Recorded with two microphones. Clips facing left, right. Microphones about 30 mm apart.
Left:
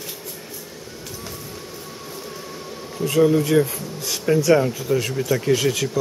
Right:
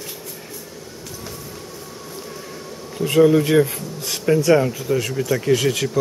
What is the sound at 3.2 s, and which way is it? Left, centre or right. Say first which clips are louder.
Speech: right 2 dB; centre.